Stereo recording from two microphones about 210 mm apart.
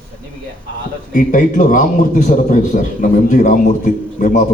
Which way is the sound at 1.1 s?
40° left (ahead or behind).